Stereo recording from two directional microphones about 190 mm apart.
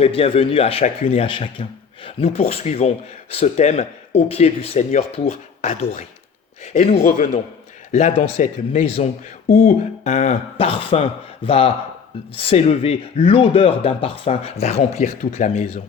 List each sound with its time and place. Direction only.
0.0 s speech: 30° left (ahead or behind)